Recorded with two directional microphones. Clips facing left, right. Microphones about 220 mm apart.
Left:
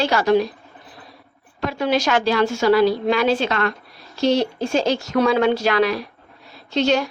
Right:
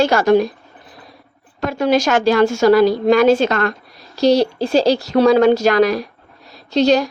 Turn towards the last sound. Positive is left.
turn(degrees=-40)  # may be behind; listen again after turning